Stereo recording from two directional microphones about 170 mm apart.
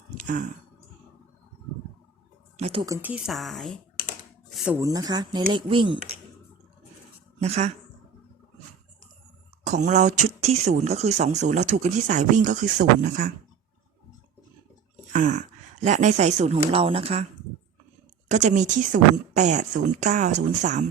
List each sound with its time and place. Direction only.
0.2 s a sound: 45° right (ahead or behind)
2.6 s speech: 35° right (ahead or behind)
2.8 s speech: 20° right (ahead or behind)
3.1 s speech: 5° right (ahead or behind)
4.8 s speech: 20° right (ahead or behind)
7.3 s speech: 40° right (ahead or behind)
9.6 s speech: 45° right (ahead or behind)
15.1 s speech: 45° right (ahead or behind)
18.3 s speech: 45° right (ahead or behind)